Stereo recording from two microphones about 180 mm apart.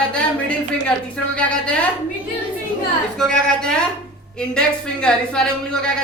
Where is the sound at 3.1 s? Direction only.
5° left (ahead or behind).